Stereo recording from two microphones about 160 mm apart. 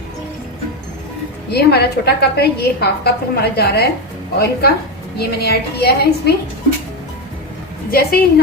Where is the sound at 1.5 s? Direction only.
90° left.